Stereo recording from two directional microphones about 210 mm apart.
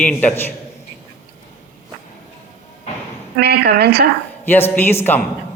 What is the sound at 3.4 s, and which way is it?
Speech, 50° right (ahead or behind).